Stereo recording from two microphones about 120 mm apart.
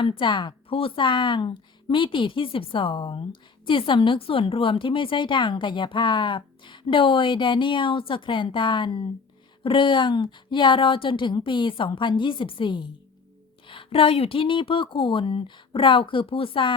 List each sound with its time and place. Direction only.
0.0 s a woman's voice: 45° left (ahead or behind)